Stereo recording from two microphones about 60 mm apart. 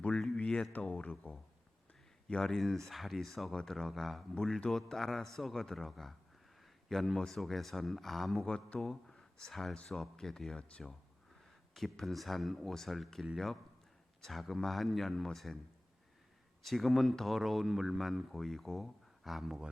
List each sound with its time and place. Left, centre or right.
0.3 s a sound: centre
0.7 s speech: left
2.2 s speech: centre
8.4 s speech: centre
11.7 s speech: centre
16.6 s speech: centre